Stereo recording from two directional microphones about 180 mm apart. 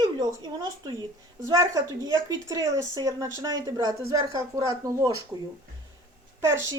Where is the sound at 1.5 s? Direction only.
20° right (ahead or behind).